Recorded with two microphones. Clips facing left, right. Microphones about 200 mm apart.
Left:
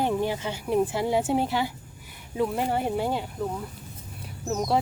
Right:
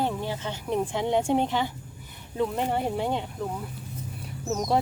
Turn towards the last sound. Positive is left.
turn(degrees=0)  # may be behind; listen again after turning